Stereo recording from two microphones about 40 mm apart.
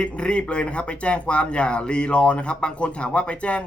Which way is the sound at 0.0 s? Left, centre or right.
Left.